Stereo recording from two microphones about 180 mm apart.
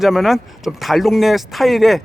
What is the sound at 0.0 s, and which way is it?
Speech, centre (ahead or behind).